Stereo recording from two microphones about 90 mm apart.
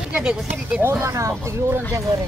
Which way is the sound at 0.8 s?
30° right (ahead or behind).